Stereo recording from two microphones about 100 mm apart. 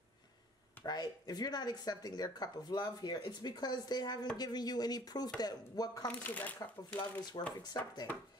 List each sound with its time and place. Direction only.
0.8 s speech: 40° left (ahead or behind)
6.0 s speech: 15° left (ahead or behind)
7.0 s speech: 45° left (ahead or behind)